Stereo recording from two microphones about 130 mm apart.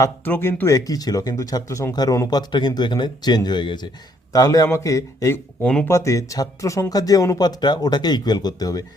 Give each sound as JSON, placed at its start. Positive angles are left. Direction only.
{"t": 0.3, "sound": "speech", "side_deg": 15}